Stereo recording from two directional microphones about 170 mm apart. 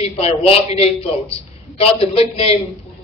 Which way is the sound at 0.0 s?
35° left (ahead or behind).